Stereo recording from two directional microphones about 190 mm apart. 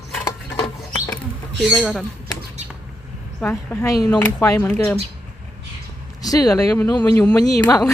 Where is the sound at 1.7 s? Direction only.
Centre (ahead or behind).